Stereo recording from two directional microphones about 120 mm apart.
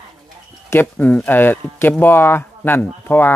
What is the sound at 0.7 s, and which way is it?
Speech, 15° left (ahead or behind).